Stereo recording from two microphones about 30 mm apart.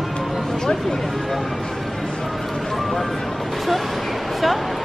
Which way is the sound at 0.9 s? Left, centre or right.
Centre.